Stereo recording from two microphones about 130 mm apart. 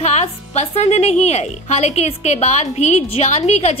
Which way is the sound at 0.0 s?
60° left (ahead or behind).